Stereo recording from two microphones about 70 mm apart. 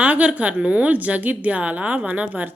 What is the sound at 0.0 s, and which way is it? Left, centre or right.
A woman's voice, centre.